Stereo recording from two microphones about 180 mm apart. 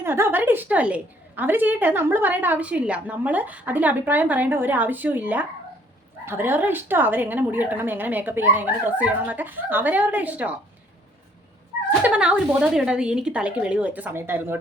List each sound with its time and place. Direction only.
0.0 s a woman's voice: 15° right (ahead or behind)
11.9 s a woman's voice: 10° right (ahead or behind)